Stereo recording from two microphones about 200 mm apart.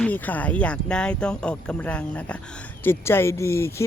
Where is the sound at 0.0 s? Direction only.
10° left (ahead or behind).